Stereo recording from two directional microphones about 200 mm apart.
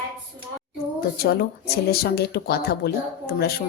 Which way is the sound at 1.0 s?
50° left (ahead or behind).